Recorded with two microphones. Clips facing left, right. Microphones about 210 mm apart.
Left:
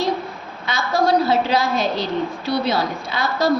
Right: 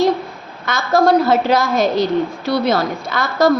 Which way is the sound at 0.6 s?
45° right (ahead or behind).